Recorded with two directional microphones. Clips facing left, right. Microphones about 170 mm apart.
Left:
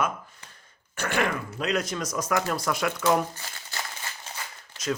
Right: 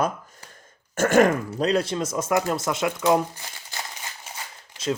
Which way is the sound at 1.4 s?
35° right (ahead or behind).